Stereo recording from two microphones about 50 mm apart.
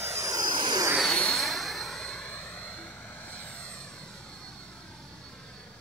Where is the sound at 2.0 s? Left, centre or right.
Centre.